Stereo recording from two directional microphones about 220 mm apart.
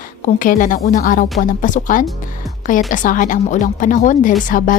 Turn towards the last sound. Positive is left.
turn(degrees=35)  # may be behind; listen again after turning